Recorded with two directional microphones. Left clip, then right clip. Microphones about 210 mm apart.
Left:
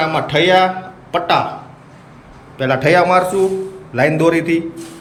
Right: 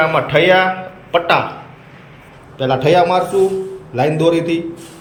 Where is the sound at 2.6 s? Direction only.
Centre (ahead or behind).